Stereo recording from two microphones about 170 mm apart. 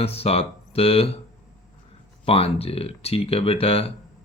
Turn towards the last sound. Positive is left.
turn(degrees=35)  # may be behind; listen again after turning